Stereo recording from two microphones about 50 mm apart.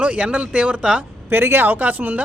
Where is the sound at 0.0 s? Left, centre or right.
Right.